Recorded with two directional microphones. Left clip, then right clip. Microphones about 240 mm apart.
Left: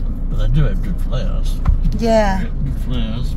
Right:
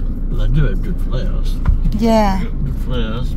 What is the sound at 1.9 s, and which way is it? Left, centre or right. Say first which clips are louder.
Speech: even; centre.